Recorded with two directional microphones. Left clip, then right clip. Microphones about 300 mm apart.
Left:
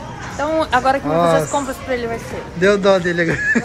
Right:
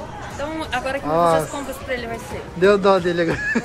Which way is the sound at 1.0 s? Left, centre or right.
Centre.